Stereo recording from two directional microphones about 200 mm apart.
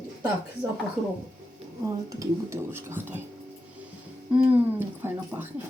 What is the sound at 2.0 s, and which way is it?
Speech, 15° right (ahead or behind).